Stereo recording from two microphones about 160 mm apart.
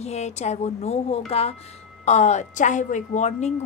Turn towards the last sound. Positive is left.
turn(degrees=45)  # may be behind; listen again after turning